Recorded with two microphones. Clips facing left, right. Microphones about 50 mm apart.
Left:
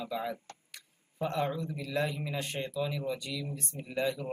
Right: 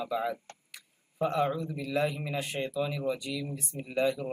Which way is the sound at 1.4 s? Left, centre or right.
Centre.